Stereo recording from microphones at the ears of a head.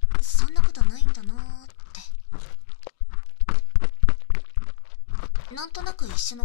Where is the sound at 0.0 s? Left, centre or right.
Left.